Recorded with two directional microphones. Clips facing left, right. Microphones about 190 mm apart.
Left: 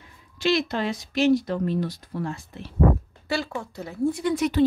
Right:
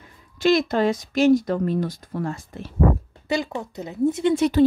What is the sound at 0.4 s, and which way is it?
Speech, 45° right (ahead or behind).